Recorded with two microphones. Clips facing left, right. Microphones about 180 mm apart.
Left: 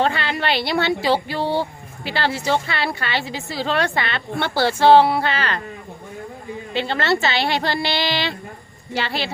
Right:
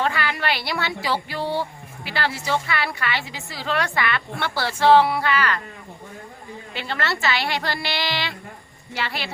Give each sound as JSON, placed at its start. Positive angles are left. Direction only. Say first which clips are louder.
{"t": 0.0, "sound": "a woman's voice", "louder": "left 3 dB", "side_deg": 25}
{"t": 6.7, "sound": "a woman's voice", "louder": "left 7 dB", "side_deg": 25}